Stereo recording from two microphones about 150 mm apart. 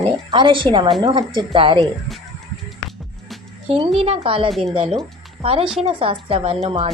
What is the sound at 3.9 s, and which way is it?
A woman's voice, 40° right (ahead or behind).